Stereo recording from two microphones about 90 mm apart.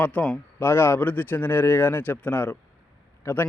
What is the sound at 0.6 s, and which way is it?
A man's voice, 30° left (ahead or behind).